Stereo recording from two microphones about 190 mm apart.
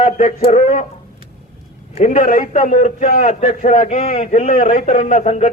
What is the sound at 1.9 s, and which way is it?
A man's voice, 40° left (ahead or behind).